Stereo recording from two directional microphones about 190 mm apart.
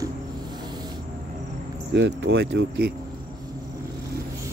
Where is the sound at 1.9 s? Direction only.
70° right (ahead or behind).